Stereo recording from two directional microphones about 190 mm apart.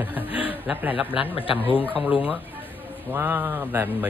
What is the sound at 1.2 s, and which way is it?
Speech, 30° left (ahead or behind).